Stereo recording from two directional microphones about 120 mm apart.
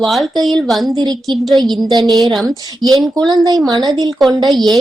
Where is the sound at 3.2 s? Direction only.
35° right (ahead or behind).